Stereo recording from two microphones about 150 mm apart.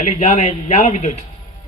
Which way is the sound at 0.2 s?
50° left (ahead or behind).